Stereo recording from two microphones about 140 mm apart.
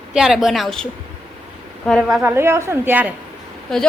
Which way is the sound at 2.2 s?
15° right (ahead or behind).